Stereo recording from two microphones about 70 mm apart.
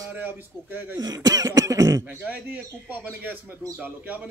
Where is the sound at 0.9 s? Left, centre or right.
Right.